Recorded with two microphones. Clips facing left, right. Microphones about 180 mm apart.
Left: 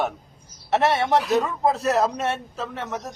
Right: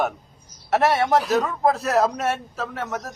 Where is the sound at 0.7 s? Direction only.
Centre (ahead or behind).